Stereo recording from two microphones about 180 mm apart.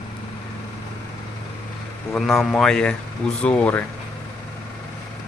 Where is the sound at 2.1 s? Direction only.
Centre (ahead or behind).